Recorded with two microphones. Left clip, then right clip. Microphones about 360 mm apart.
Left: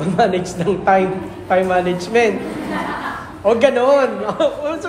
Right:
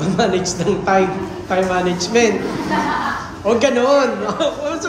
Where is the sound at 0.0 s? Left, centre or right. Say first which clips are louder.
Left 1 dB; left.